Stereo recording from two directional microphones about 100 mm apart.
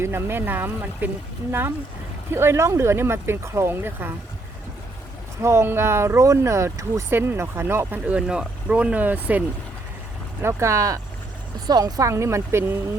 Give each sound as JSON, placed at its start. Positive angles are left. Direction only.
{"t": 0.0, "sound": "speech", "side_deg": -25}
{"t": 2.3, "sound": "speech", "side_deg": -25}
{"t": 5.4, "sound": "speech", "side_deg": -25}
{"t": 8.0, "sound": "speech", "side_deg": -10}
{"t": 10.4, "sound": "speech", "side_deg": -30}